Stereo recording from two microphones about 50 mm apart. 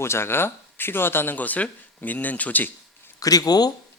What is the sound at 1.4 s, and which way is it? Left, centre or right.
A man's voice, left.